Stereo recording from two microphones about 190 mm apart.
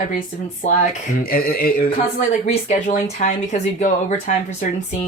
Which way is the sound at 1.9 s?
30° left (ahead or behind).